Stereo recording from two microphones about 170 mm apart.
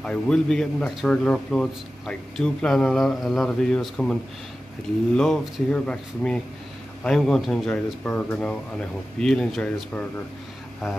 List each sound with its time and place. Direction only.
0.0 s a man's voice: 5° left (ahead or behind)